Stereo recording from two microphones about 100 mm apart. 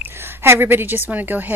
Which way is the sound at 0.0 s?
20° right (ahead or behind).